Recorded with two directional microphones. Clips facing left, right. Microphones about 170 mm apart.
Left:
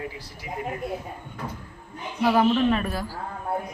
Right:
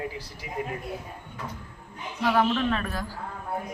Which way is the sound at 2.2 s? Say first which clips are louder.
Left 4 dB; 10° left (ahead or behind).